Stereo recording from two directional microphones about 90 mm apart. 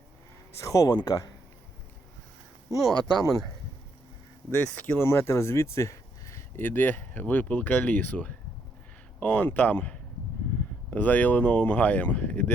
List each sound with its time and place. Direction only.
0.6 s speech: 40° left (ahead or behind)
2.9 s speech: 50° right (ahead or behind)
4.5 s speech: 20° left (ahead or behind); by 6.4 s 35° left (ahead or behind)
6.6 s speech: 20° left (ahead or behind)